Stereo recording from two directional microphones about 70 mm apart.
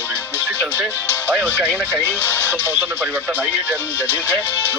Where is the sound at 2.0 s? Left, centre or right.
Left.